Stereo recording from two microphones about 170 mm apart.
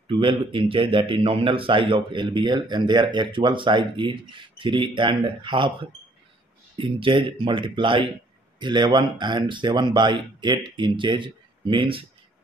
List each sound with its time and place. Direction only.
0.1 s a man's voice: 30° right (ahead or behind)